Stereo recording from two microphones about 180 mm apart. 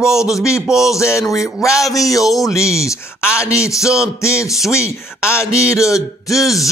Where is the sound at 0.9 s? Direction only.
15° left (ahead or behind).